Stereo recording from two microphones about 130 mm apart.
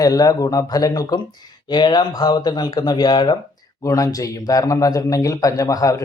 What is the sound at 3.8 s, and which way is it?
Speech, 25° left (ahead or behind).